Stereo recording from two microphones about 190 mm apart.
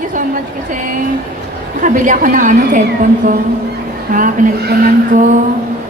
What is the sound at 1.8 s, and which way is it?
Speech, 45° right (ahead or behind).